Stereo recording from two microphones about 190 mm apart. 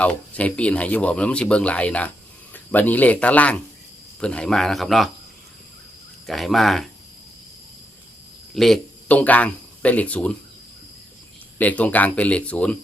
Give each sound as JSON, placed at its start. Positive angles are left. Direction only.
{"t": 0.0, "sound": "speech", "side_deg": 5}
{"t": 6.2, "sound": "speech", "side_deg": 0}
{"t": 8.5, "sound": "speech", "side_deg": 0}
{"t": 11.5, "sound": "speech", "side_deg": 10}